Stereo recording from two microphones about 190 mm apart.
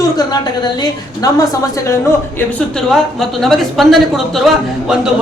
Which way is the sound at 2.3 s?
5° left (ahead or behind).